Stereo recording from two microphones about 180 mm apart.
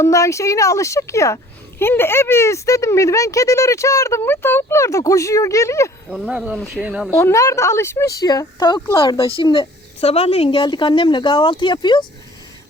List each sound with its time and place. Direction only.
0.0 s speech: 15° left (ahead or behind)
6.1 s speech: 5° right (ahead or behind)
7.1 s speech: 15° left (ahead or behind)